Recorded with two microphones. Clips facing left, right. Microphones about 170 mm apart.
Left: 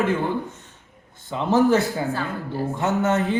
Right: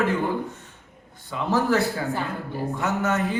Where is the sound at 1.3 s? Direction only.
20° left (ahead or behind).